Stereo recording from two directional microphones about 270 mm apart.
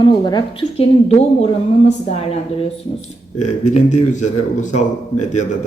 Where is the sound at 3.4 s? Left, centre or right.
Left.